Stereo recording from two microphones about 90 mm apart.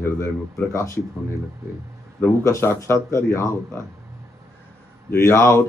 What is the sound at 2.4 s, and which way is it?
A man's voice, 30° left (ahead or behind).